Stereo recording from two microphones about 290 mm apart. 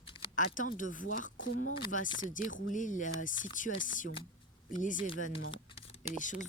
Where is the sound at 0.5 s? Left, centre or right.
Left.